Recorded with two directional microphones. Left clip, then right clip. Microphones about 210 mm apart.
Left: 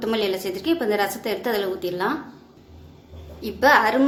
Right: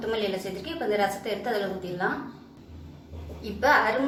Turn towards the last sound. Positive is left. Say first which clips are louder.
# left 5 dB
turn(degrees=55)  # may be behind; listen again after turning